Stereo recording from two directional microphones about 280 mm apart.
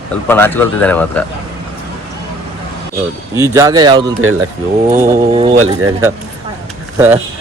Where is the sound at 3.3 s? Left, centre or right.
Centre.